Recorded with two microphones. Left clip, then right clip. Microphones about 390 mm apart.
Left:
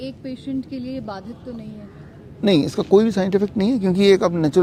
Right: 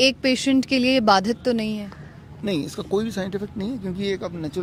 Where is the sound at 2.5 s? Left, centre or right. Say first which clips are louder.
Left 9 dB; centre.